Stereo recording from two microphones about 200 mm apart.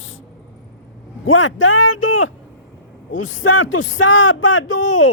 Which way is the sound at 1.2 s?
85° left.